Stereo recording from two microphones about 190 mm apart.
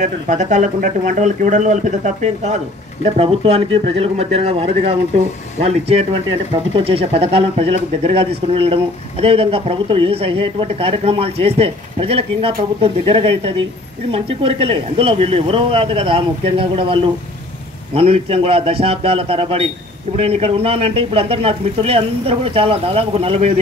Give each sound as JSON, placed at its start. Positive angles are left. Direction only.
{"t": 0.0, "sound": "speech", "side_deg": -40}